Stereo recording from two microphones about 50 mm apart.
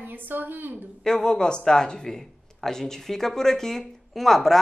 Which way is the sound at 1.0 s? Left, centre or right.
Centre.